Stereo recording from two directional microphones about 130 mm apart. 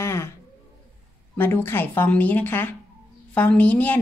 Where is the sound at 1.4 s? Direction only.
15° left (ahead or behind).